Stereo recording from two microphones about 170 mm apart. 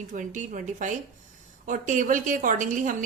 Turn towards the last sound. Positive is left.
turn(degrees=-50)  # may be behind; listen again after turning